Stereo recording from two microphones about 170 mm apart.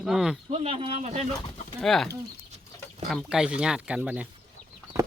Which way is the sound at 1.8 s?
Centre (ahead or behind).